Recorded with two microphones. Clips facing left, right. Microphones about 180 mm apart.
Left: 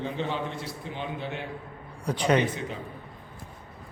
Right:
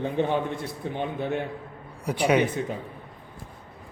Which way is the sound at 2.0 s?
10° right (ahead or behind).